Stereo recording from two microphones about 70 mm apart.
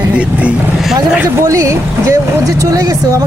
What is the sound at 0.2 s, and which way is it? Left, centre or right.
Vehicle, centre.